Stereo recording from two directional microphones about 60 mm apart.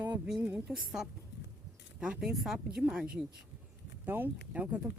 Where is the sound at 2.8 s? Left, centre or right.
Centre.